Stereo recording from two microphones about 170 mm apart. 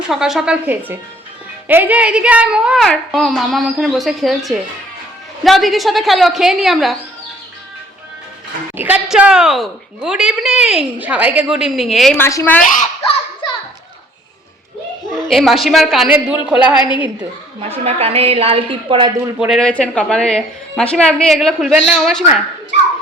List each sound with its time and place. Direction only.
0.1 s a woman's voice: 5° right (ahead or behind)
8.7 s a woman's voice: 10° right (ahead or behind)
12.1 s a woman's voice: 15° left (ahead or behind)
13.4 s children playing: 30° left (ahead or behind)
15.1 s a woman's voice: centre (ahead or behind)
16.8 s a woman's voice: 30° left (ahead or behind)
17.8 s a woman's voice: 35° right (ahead or behind)
19.4 s a woman's voice: centre (ahead or behind)